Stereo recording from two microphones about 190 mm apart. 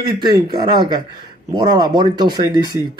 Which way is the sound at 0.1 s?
25° right (ahead or behind).